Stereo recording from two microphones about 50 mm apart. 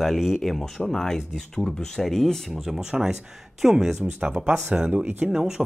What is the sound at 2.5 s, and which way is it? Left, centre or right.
Speech, centre.